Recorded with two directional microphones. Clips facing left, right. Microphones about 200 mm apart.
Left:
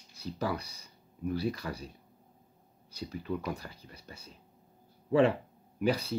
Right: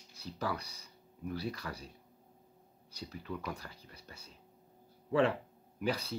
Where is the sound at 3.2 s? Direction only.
20° left (ahead or behind).